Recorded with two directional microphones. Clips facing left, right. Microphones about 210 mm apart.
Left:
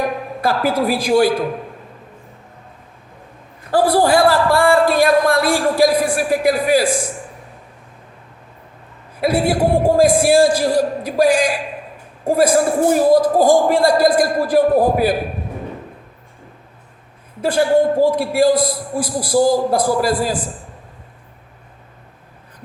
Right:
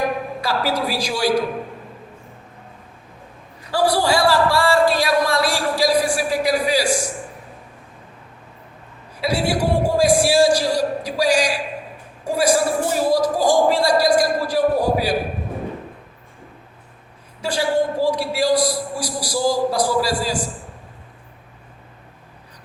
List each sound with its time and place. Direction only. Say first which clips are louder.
0.4 s a man's voice: left 6 dB; 50° left (ahead or behind)
3.6 s a man's voice: left 4 dB; 50° left (ahead or behind)
9.2 s a man's voice: left 4 dB; 55° left (ahead or behind)
17.4 s a man's voice: left 6 dB; 55° left (ahead or behind)